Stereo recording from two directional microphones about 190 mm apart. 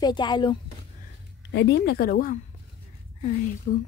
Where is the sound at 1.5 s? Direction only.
65° left (ahead or behind).